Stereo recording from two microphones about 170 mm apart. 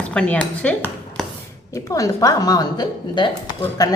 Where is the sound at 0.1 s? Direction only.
5° left (ahead or behind).